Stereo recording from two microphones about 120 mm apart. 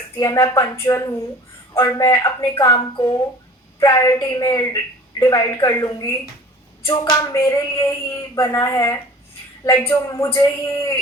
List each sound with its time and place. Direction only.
0.2 s a woman's voice: 30° left (ahead or behind)